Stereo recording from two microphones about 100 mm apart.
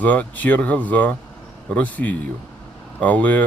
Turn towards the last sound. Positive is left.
turn(degrees=15)  # may be behind; listen again after turning